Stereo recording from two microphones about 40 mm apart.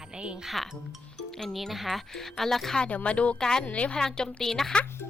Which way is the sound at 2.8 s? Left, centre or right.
Left.